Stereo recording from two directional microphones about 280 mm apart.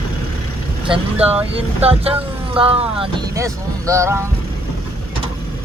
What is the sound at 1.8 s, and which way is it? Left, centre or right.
Speech, right.